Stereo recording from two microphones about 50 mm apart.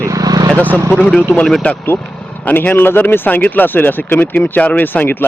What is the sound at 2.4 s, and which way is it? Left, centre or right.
Speech, left.